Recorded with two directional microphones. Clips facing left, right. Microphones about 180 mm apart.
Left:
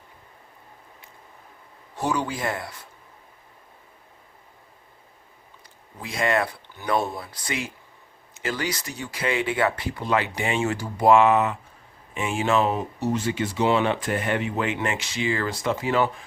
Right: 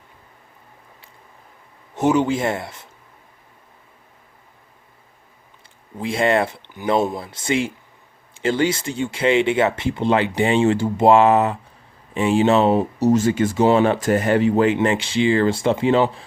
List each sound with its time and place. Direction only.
2.0 s speech: 20° right (ahead or behind)
6.0 s speech: 30° right (ahead or behind)